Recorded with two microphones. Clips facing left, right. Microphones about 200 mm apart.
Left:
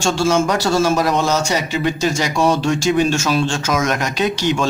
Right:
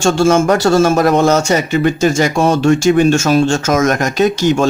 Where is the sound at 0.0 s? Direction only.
50° right (ahead or behind).